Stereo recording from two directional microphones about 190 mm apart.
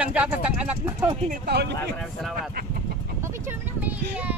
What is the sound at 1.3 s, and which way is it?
Speech, 55° right (ahead or behind).